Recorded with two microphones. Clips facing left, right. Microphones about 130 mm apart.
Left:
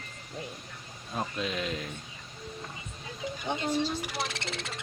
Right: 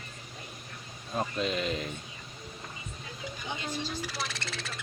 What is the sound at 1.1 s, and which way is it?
Speech, centre (ahead or behind).